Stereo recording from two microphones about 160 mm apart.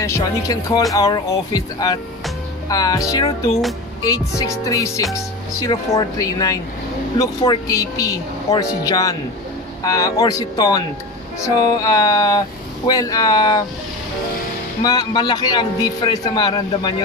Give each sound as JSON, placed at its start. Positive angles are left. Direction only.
{"t": 0.0, "sound": "speech", "side_deg": 20}
{"t": 14.8, "sound": "speech", "side_deg": 25}